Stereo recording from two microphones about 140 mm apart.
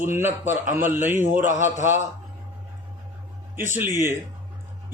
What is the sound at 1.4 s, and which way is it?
Speech, 65° right (ahead or behind).